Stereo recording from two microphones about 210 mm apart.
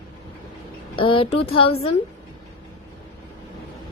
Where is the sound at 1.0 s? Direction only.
25° left (ahead or behind).